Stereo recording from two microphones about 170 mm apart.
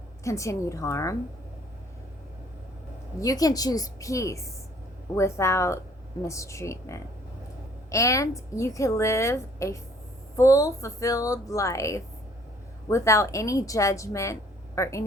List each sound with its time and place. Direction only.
0.3 s a woman's voice: 20° left (ahead or behind)
3.2 s a woman's voice: 20° left (ahead or behind)